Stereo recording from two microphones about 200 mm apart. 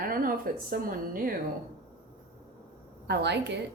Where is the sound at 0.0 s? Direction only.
45° right (ahead or behind).